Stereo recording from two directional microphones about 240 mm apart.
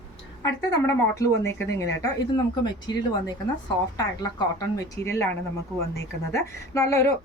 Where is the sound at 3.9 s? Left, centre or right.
Centre.